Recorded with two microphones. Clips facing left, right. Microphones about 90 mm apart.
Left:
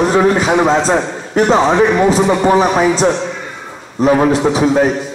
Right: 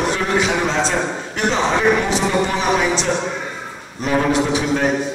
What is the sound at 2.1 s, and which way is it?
A man's voice, 40° left (ahead or behind).